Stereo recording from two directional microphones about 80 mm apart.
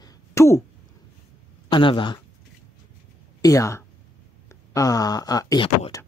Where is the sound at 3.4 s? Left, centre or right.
Left.